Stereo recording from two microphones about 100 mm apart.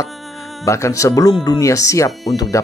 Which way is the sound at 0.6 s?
30° left (ahead or behind).